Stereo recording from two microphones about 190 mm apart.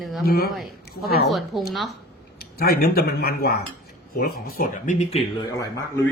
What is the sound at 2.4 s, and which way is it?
Speech, 55° left (ahead or behind).